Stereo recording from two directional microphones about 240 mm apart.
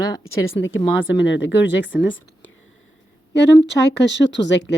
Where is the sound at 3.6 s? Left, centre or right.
Left.